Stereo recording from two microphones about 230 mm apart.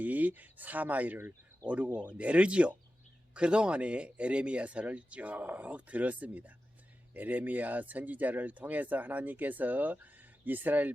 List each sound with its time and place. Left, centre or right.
0.0 s speech: centre